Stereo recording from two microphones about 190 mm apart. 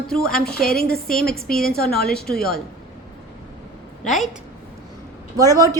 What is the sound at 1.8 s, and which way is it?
Speech, 55° left (ahead or behind).